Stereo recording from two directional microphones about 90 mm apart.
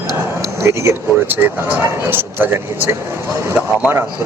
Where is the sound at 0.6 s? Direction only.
30° right (ahead or behind).